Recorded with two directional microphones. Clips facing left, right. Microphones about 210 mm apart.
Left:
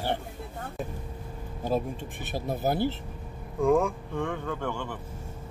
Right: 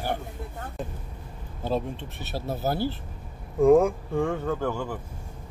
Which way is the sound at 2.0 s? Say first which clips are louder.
Left 1 dB; 55° left (ahead or behind).